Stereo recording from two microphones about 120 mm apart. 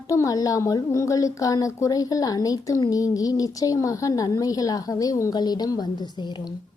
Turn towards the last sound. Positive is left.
turn(degrees=35)  # may be behind; listen again after turning